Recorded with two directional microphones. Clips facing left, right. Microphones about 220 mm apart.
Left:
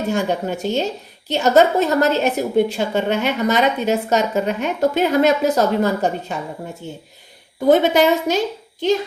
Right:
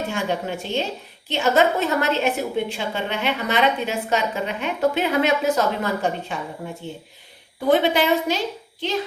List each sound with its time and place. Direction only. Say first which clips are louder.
0.1 s a woman's voice: left 5 dB; 40° left (ahead or behind)